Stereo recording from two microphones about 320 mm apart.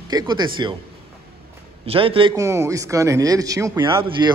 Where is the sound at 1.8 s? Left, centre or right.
Centre.